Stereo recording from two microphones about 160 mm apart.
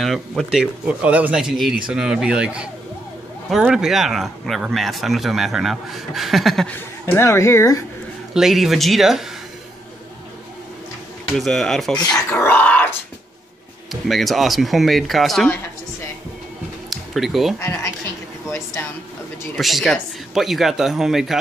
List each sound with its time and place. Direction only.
0.0 s speech: centre (ahead or behind); by 7.8 s 20° left (ahead or behind)
8.4 s speech: centre (ahead or behind)
11.3 s speech: centre (ahead or behind)
12.1 s speech: 15° left (ahead or behind)
14.0 s speech: centre (ahead or behind)
16.9 s speech: centre (ahead or behind)
17.6 s speech: 15° left (ahead or behind)
19.5 s speech: centre (ahead or behind)